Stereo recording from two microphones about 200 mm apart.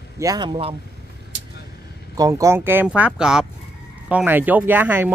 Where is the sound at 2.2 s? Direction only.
15° right (ahead or behind).